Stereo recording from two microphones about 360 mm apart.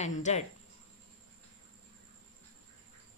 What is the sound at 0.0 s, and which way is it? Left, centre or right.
Speech, centre.